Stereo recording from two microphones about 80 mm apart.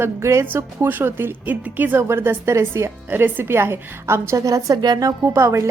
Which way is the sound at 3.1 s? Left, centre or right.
Right.